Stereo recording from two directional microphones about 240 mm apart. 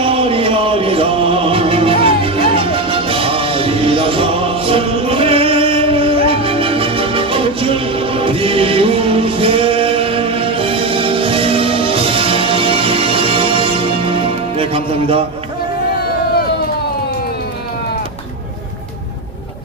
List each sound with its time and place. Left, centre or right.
0.0 s music: right